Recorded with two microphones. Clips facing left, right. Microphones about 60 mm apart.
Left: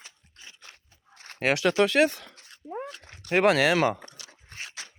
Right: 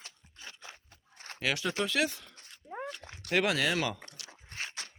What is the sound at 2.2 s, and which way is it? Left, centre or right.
Dog, left.